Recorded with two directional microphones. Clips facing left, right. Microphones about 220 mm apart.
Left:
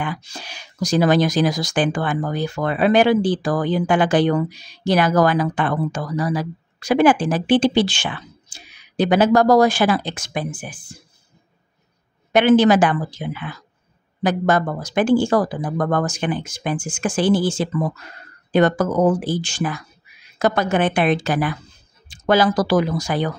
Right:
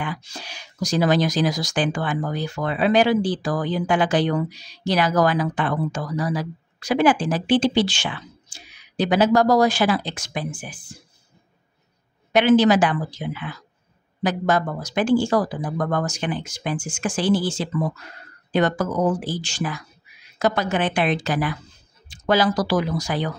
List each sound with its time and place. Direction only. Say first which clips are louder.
0.0 s speech: left 3 dB; 50° left (ahead or behind)
12.3 s speech: left 2 dB; 55° left (ahead or behind)